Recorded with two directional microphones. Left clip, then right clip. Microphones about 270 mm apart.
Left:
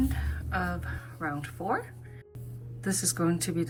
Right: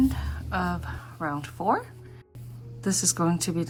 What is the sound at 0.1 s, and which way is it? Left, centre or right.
Speech, centre.